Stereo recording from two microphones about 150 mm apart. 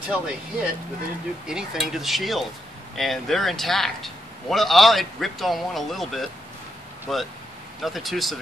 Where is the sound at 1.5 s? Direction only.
5° right (ahead or behind).